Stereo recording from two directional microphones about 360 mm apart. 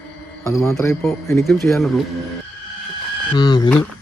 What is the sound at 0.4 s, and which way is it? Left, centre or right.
Speech, centre.